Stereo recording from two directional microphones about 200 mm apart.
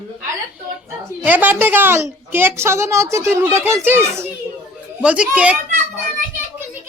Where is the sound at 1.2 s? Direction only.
10° right (ahead or behind).